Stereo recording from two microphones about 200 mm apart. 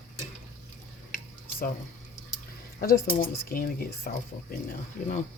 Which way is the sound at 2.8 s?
45° left (ahead or behind).